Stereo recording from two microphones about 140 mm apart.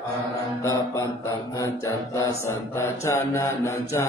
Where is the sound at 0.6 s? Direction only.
20° left (ahead or behind).